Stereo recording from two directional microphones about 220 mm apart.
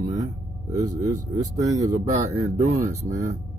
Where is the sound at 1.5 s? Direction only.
15° right (ahead or behind).